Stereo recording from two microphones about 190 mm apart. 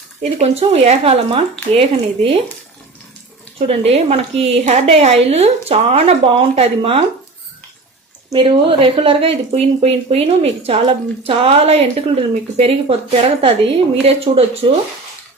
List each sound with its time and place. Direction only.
0.2 s speech: 35° right (ahead or behind)
3.7 s speech: 35° right (ahead or behind)
8.3 s speech: 25° right (ahead or behind)